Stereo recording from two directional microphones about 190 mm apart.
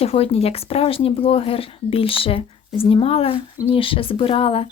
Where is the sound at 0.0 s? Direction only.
30° left (ahead or behind).